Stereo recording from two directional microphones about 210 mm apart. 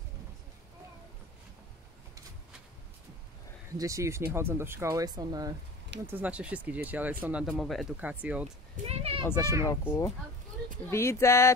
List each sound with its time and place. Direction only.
3.7 s speech: 15° right (ahead or behind)
6.0 s speech: 10° right (ahead or behind)
8.8 s speech: 30° right (ahead or behind)
9.2 s speech: 10° left (ahead or behind)